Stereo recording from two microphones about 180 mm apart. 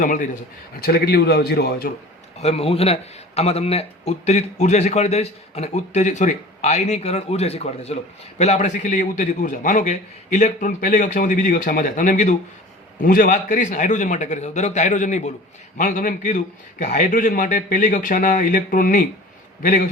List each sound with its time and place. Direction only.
0.0 s a man's voice: 45° left (ahead or behind)
0.8 s a man's voice: 60° left (ahead or behind)
2.4 s a man's voice: 35° left (ahead or behind)